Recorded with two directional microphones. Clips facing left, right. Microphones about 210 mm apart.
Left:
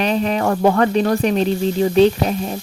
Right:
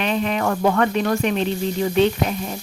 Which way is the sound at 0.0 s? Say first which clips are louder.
Left 3 dB; 35° left (ahead or behind).